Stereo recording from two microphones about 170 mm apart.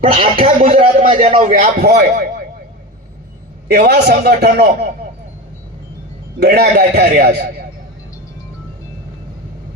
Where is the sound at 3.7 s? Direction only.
70° right (ahead or behind).